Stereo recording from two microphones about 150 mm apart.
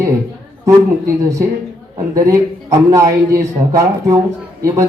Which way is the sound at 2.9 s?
20° right (ahead or behind).